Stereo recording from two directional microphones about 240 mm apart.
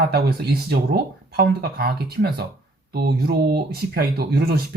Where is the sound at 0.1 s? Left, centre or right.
Right.